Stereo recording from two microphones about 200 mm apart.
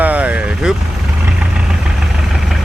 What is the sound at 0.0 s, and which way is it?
Vehicle, 5° right (ahead or behind).